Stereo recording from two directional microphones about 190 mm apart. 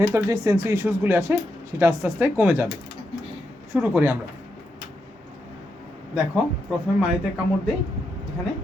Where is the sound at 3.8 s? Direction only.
10° right (ahead or behind).